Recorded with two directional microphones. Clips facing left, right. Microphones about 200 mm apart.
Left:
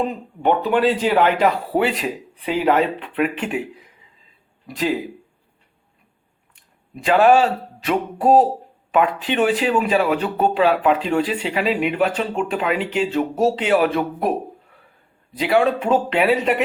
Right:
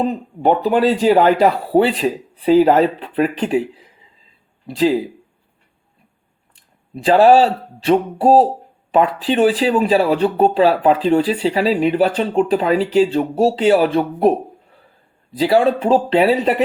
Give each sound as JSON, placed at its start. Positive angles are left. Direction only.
{"t": 0.0, "sound": "speech", "side_deg": -35}
{"t": 6.6, "sound": "speech", "side_deg": -35}